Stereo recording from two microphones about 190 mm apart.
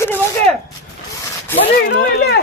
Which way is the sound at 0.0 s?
10° left (ahead or behind).